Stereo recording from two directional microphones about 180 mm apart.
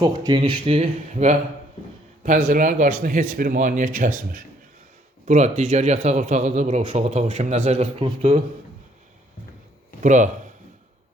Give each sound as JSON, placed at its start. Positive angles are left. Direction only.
{"t": 0.0, "sound": "speech", "side_deg": -25}
{"t": 0.8, "sound": "a man's voice", "side_deg": -40}
{"t": 10.0, "sound": "speech", "side_deg": -45}